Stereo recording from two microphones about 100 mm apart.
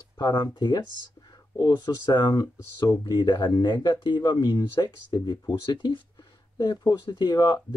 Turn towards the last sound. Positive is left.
turn(degrees=45)  # may be behind; listen again after turning